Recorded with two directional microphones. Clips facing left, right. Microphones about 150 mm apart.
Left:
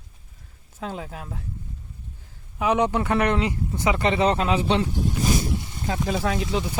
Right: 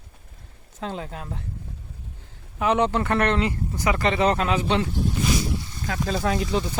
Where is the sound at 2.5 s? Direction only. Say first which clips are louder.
Even; 10° left (ahead or behind); by 4.8 s 30° left (ahead or behind).